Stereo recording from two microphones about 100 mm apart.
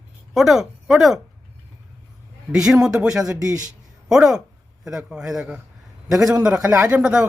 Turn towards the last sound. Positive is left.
turn(degrees=-10)  # may be behind; listen again after turning